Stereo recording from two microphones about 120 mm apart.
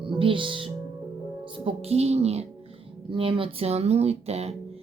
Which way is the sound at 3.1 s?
45° right (ahead or behind).